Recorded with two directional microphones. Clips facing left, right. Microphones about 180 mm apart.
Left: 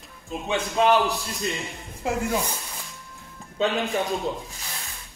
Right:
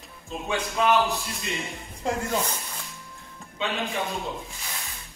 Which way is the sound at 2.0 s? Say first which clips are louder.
Left 1 dB; 10° left (ahead or behind).